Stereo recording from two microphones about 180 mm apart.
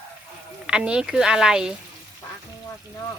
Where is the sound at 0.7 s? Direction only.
5° right (ahead or behind).